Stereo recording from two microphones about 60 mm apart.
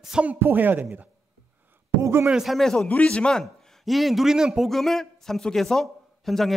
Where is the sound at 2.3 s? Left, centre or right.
Centre.